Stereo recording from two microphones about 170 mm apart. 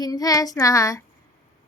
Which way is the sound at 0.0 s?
20° left (ahead or behind).